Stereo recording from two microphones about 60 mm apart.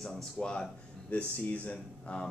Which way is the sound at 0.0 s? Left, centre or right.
Centre.